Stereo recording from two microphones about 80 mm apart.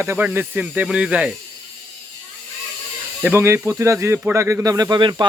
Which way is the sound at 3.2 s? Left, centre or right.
Right.